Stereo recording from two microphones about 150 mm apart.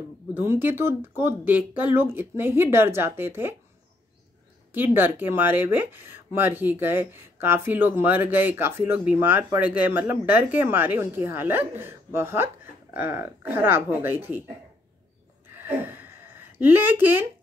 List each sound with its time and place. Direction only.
0.3 s speech: 15° right (ahead or behind)
4.7 s speech: 15° right (ahead or behind)
15.4 s a sound: 15° right (ahead or behind)